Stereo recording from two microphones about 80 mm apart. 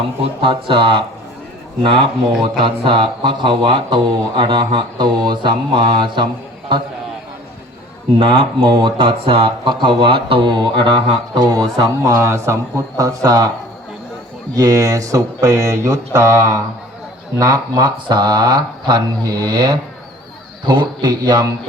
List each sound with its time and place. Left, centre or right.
0.4 s speech: right
2.4 s speech: right
8.2 s speech: right
14.5 s speech: right
17.3 s speech: right